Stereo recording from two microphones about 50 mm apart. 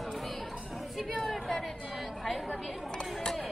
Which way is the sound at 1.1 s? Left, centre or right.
Centre.